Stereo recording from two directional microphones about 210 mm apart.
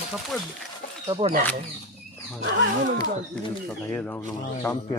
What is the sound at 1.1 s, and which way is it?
Speech, 25° right (ahead or behind).